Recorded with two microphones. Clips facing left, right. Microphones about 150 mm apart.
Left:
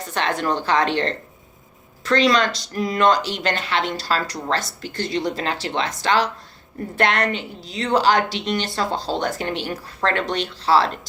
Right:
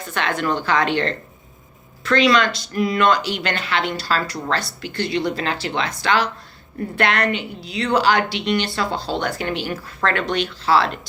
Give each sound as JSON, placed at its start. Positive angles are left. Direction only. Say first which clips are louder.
{"t": 0.0, "sound": "a woman's voice", "louder": "even", "side_deg": 35}